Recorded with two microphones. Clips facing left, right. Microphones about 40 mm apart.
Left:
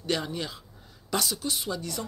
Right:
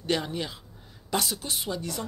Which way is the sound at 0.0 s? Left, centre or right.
Right.